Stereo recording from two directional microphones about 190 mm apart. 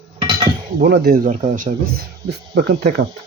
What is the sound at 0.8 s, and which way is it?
Speech, 55° right (ahead or behind).